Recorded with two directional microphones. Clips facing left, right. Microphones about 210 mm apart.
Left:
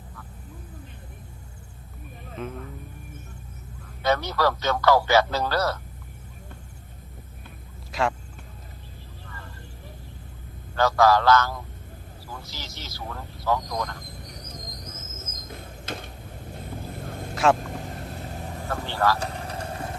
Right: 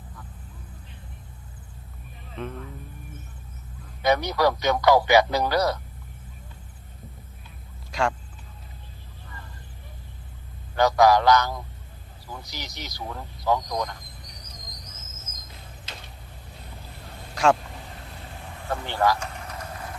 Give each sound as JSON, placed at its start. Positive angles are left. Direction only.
{"t": 2.3, "sound": "speech", "side_deg": 5}
{"t": 4.0, "sound": "speech", "side_deg": -15}
{"t": 7.9, "sound": "vehicle", "side_deg": 0}
{"t": 10.8, "sound": "speech", "side_deg": -15}
{"t": 14.3, "sound": "insect", "side_deg": 50}
{"t": 15.4, "sound": "a sound", "side_deg": 50}
{"t": 16.6, "sound": "fowl", "side_deg": 50}
{"t": 17.3, "sound": "speech", "side_deg": 0}
{"t": 17.6, "sound": "vehicle", "side_deg": 45}
{"t": 18.9, "sound": "speech", "side_deg": -15}
{"t": 19.2, "sound": "a sound", "side_deg": 35}